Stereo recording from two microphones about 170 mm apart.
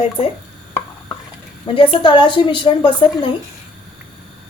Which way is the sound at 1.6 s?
30° left (ahead or behind).